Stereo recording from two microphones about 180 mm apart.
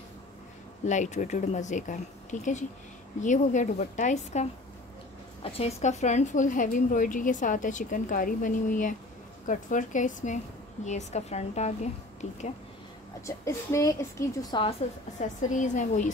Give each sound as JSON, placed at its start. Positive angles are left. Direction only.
{"t": 0.8, "sound": "a woman's voice", "side_deg": 40}
{"t": 13.5, "sound": "a woman's voice", "side_deg": 15}